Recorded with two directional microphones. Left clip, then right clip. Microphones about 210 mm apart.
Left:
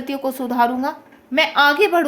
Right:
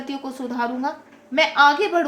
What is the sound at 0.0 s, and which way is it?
A woman's voice, 50° left (ahead or behind).